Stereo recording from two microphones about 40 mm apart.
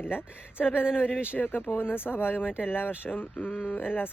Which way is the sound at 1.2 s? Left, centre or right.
Left.